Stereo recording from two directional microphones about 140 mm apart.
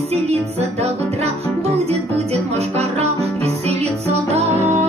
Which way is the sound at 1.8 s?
50° right (ahead or behind).